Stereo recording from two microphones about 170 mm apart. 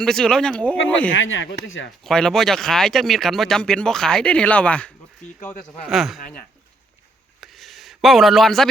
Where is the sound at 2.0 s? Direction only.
5° left (ahead or behind).